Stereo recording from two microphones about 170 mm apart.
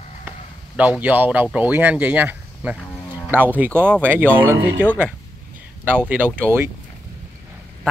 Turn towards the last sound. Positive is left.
turn(degrees=-15)  # may be behind; listen again after turning